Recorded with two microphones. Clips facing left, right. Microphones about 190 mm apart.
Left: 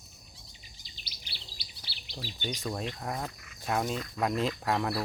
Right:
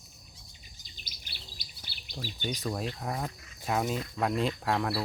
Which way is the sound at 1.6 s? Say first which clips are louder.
Left 1 dB; 50° right (ahead or behind).